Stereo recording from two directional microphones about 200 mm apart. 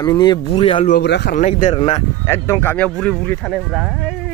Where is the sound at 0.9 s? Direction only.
55° left (ahead or behind).